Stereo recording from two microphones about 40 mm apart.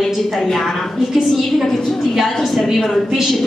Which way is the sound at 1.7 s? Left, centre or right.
Centre.